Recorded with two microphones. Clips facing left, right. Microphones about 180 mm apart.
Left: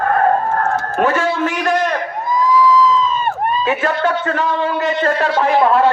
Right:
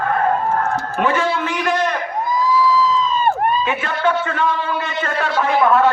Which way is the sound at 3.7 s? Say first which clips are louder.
Left 3 dB; 40° left (ahead or behind).